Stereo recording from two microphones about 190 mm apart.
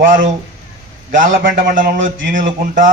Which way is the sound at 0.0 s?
45° right (ahead or behind).